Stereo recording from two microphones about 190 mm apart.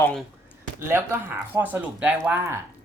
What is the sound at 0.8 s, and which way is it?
Speech, 10° right (ahead or behind).